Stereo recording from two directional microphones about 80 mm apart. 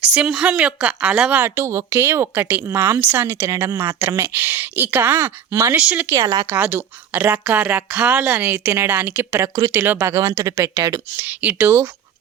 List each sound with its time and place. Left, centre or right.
0.0 s a woman's voice: centre
1.4 s speech: right
3.0 s speech: right
3.2 s speech: right; by 6.1 s centre
6.1 s speech: right
6.5 s speech: right
10.2 s speech: right
11.3 s speech: right